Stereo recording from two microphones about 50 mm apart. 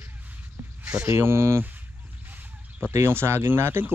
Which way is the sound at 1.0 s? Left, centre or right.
Right.